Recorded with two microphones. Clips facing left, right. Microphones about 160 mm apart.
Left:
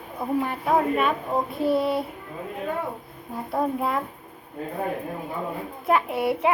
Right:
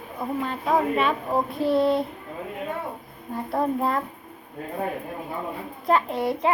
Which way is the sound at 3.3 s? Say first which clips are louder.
Right 1 dB; centre (ahead or behind).